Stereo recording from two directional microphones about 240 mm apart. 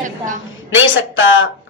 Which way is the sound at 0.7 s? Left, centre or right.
Left.